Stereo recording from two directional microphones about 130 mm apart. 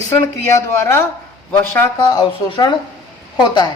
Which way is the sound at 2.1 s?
35° left (ahead or behind).